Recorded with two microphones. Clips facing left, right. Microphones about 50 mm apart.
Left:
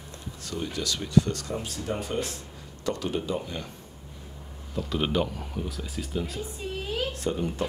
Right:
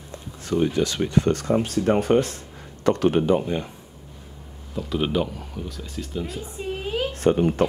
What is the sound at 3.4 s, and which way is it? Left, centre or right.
Speech, right.